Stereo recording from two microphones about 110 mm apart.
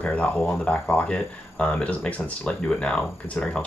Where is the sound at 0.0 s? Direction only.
10° left (ahead or behind).